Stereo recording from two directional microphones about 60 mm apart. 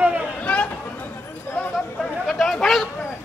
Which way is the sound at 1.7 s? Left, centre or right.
Centre.